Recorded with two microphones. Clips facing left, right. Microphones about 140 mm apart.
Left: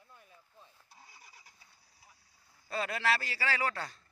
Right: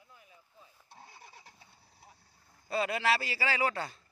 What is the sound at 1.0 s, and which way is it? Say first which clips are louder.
Vehicle: right 6 dB; 55° right (ahead or behind).